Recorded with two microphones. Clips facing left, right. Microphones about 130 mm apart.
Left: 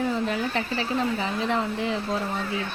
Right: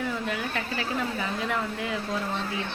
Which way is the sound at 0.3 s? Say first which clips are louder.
Left 4 dB; 30° left (ahead or behind).